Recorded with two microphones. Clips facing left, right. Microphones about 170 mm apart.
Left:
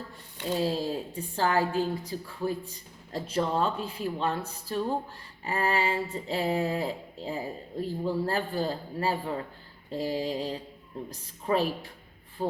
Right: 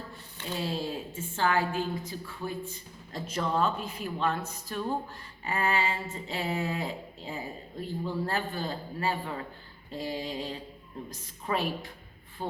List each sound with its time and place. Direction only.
0.4 s a woman's voice: 40° left (ahead or behind)